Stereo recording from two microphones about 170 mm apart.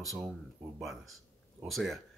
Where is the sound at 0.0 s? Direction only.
Centre (ahead or behind).